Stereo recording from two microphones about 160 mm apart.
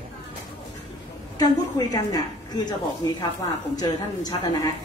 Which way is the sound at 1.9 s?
25° left (ahead or behind).